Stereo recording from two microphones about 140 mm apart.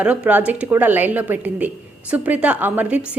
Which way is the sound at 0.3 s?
10° right (ahead or behind).